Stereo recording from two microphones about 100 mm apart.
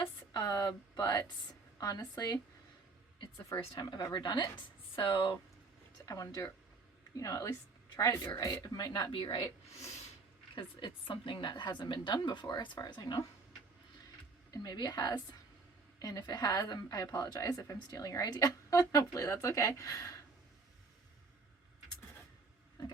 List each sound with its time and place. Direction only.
0.3 s a woman's voice: 40° left (ahead or behind)
3.8 s a woman's voice: 50° left (ahead or behind)
6.1 s a woman's voice: 35° left (ahead or behind)
9.1 s a woman's voice: 55° left (ahead or behind)
10.5 s a woman's voice: 55° left (ahead or behind)
14.5 s a woman's voice: 40° left (ahead or behind)